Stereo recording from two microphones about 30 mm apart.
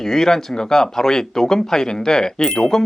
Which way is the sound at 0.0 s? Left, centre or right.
Centre.